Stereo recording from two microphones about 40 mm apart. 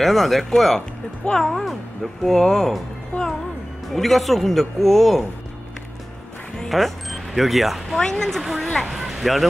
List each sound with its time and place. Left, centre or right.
0.0 s a man's voice: centre
3.1 s speech: left
3.9 s a man's voice: centre
6.7 s speech: centre
8.0 s speech: centre
8.4 s a man's voice: centre